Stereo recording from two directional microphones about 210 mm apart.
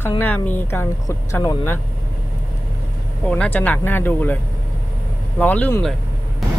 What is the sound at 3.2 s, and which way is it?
Speech, 5° left (ahead or behind).